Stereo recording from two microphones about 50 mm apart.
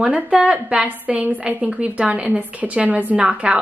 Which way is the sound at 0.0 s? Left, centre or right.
Right.